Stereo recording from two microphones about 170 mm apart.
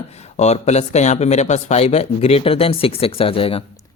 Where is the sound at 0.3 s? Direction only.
40° left (ahead or behind).